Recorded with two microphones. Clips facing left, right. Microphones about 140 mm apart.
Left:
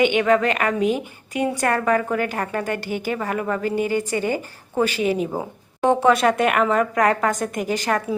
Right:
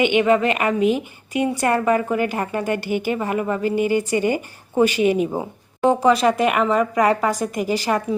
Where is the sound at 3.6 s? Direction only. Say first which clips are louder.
Right 3 dB; 45° left (ahead or behind).